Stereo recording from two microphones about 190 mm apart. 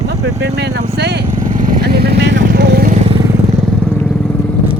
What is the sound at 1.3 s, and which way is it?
Vehicle, 40° right (ahead or behind).